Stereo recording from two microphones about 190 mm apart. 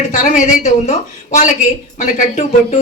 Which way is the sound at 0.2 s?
40° left (ahead or behind).